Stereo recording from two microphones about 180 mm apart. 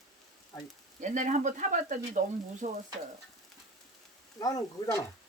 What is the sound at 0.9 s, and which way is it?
Speech, 45° right (ahead or behind).